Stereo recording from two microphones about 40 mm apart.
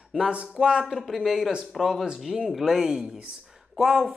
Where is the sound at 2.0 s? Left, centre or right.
Centre.